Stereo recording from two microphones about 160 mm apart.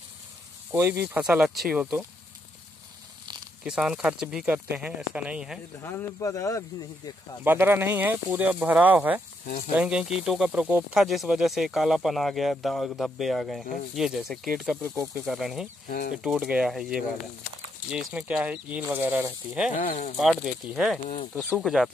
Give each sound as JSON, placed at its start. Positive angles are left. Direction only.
{"t": 0.7, "sound": "speech", "side_deg": -15}
{"t": 3.6, "sound": "speech", "side_deg": -5}
{"t": 5.8, "sound": "speech", "side_deg": 15}
{"t": 7.4, "sound": "speech", "side_deg": -15}
{"t": 19.8, "sound": "speech", "side_deg": 50}
{"t": 20.2, "sound": "speech", "side_deg": -5}